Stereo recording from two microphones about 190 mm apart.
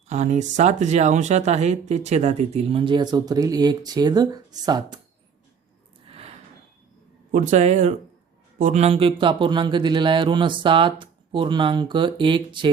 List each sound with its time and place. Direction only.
0.1 s speech: 40° right (ahead or behind); by 4.9 s 20° right (ahead or behind)
7.3 s speech: 40° right (ahead or behind); by 12.7 s 25° right (ahead or behind)